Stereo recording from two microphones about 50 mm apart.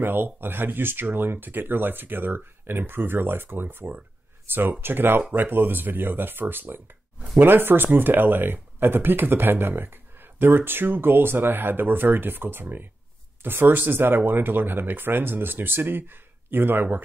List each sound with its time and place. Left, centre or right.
0.0 s speech: right